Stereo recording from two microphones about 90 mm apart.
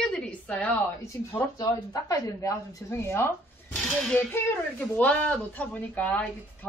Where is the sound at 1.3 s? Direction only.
45° left (ahead or behind).